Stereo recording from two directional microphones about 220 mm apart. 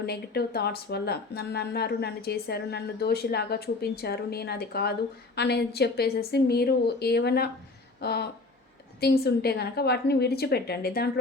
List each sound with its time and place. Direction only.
0.0 s speech: 45° left (ahead or behind)